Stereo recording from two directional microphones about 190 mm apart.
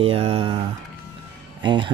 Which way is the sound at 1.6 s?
25° right (ahead or behind).